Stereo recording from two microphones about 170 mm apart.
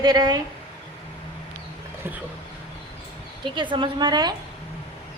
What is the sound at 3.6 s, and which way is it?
Speech, 30° right (ahead or behind).